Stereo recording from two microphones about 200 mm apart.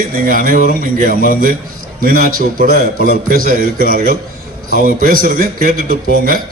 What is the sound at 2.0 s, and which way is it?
A man's voice, 45° right (ahead or behind).